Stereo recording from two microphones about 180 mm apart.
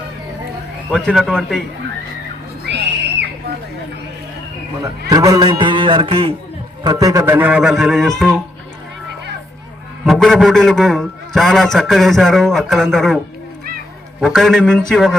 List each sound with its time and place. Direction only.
0.9 s a man's voice: centre (ahead or behind)
2.6 s a sound: 70° right (ahead or behind)
5.0 s a man's voice: 20° right (ahead or behind)
6.8 s a man's voice: 20° right (ahead or behind); by 8.4 s centre (ahead or behind)
10.1 s a man's voice: centre (ahead or behind)
14.2 s a man's voice: centre (ahead or behind)